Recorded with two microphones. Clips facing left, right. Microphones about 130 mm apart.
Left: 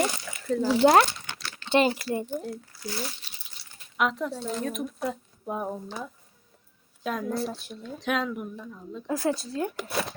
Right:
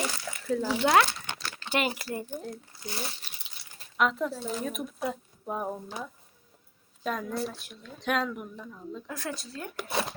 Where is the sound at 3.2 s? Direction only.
45° right (ahead or behind).